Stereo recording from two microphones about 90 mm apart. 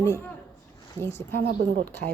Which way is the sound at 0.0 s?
25° left (ahead or behind).